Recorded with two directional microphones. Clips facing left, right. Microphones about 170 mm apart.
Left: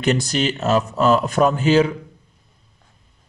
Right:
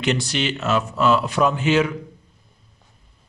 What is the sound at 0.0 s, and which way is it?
A man's voice, 45° left (ahead or behind).